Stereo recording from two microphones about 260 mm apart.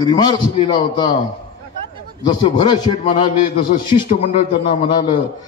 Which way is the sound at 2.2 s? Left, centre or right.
Centre.